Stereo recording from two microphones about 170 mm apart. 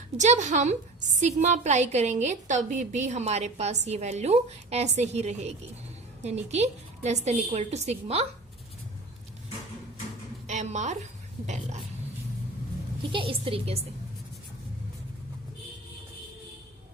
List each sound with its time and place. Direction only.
0.2 s a woman's voice: 45° right (ahead or behind)
10.4 s a sound: 45° right (ahead or behind)
11.4 s a woman's voice: 45° right (ahead or behind)
13.0 s a woman's voice: 30° right (ahead or behind)